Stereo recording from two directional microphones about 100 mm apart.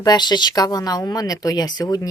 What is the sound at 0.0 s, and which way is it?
Speech, 45° left (ahead or behind).